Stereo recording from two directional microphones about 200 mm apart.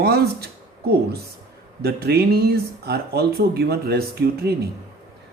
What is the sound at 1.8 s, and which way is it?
Speech, 50° right (ahead or behind).